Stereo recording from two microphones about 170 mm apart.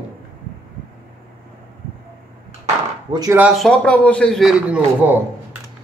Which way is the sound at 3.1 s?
25° right (ahead or behind).